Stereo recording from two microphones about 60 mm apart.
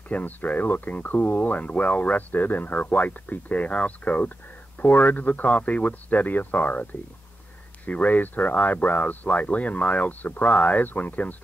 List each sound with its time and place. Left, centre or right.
0.1 s speech: left